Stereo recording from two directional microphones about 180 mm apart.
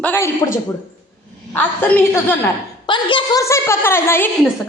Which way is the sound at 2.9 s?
25° left (ahead or behind).